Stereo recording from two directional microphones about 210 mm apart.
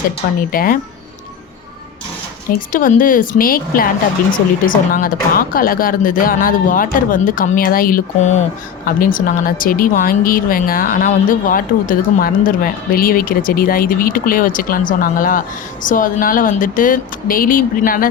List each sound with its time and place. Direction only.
0.5 s speech: 45° left (ahead or behind)
2.6 s speech: 40° left (ahead or behind)